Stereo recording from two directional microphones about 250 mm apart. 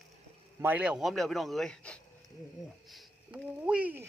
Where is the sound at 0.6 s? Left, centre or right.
Centre.